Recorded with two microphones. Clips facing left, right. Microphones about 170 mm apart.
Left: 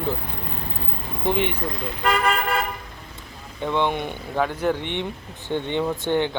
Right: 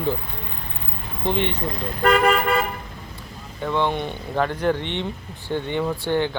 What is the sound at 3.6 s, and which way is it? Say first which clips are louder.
Speech: even; 15° left (ahead or behind).